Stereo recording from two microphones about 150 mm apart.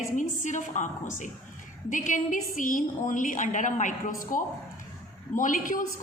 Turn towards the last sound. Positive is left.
turn(degrees=60)  # may be behind; listen again after turning